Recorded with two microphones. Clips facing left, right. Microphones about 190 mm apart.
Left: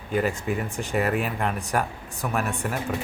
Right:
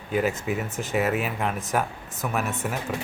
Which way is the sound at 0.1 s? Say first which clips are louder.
Even; 5° right (ahead or behind).